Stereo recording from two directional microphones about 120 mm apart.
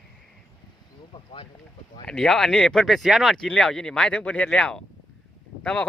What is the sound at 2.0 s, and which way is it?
Speech, 5° left (ahead or behind).